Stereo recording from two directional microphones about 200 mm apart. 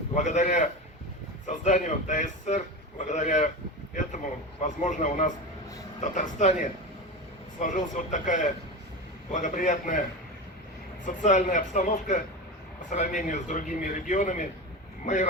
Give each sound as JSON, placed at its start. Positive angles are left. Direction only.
{"t": 0.1, "sound": "a man's voice", "side_deg": 35}
{"t": 4.6, "sound": "a man's voice", "side_deg": 40}
{"t": 7.6, "sound": "a man's voice", "side_deg": 40}
{"t": 11.0, "sound": "a man's voice", "side_deg": 40}